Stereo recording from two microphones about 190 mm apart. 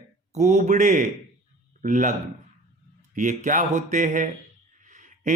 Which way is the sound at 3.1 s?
40° right (ahead or behind).